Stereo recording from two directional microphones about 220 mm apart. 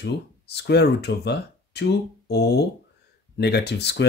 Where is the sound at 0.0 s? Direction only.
50° left (ahead or behind).